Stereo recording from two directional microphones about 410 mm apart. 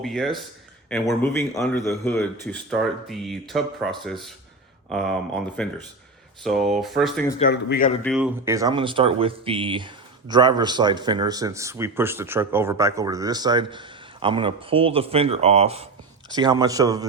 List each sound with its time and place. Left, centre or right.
0.0 s a man's voice: centre
5.6 s a man's voice: centre
7.3 s speech: left
8.0 s speech: centre